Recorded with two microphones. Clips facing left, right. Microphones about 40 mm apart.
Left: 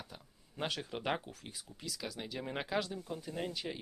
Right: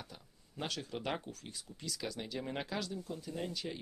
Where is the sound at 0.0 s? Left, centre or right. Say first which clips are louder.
Left 1 dB; centre.